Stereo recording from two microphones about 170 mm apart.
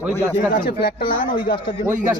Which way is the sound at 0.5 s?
65° left (ahead or behind).